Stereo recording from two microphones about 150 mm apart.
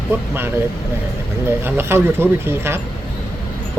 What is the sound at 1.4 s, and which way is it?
Speech, 15° right (ahead or behind).